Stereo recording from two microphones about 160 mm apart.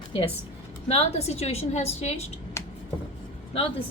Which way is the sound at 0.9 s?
40° left (ahead or behind).